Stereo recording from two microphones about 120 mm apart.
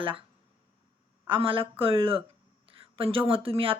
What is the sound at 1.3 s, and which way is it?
Speech, 45° right (ahead or behind).